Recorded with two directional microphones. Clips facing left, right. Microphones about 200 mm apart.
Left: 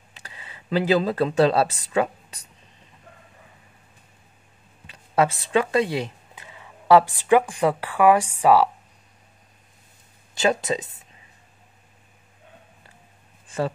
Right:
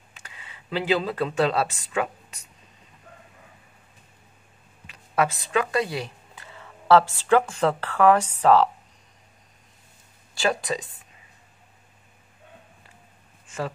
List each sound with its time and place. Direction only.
0.1 s speech: 35° left (ahead or behind)
4.8 s speech: 30° left (ahead or behind); by 8.6 s 10° left (ahead or behind)
10.3 s speech: 20° left (ahead or behind)
13.5 s a sound: 30° left (ahead or behind)